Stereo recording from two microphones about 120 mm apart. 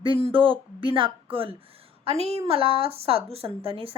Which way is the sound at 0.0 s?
45° right (ahead or behind).